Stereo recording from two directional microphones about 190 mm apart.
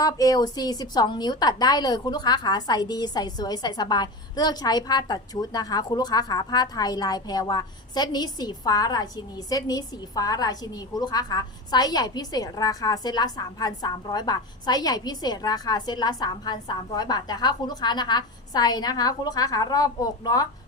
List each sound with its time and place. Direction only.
0.0 s a woman's voice: 20° left (ahead or behind)